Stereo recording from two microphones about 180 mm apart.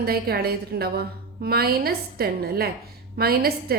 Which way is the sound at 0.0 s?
60° right (ahead or behind).